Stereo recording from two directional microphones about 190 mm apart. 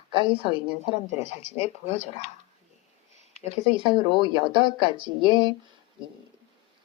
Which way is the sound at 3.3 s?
25° right (ahead or behind).